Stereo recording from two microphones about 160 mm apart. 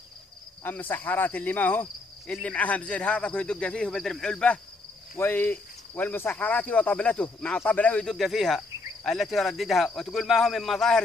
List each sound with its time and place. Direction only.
0.7 s speech: 10° left (ahead or behind)
5.1 s cricket: 10° left (ahead or behind)